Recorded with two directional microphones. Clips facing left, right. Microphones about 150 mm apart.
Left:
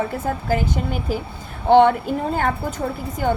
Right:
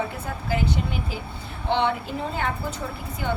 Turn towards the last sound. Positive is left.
turn(degrees=45)  # may be behind; listen again after turning